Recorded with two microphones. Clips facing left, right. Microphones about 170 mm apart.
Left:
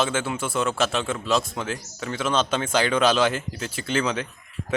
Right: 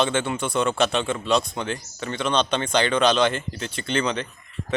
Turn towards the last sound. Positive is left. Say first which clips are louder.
# even
turn(degrees=5)  # may be behind; listen again after turning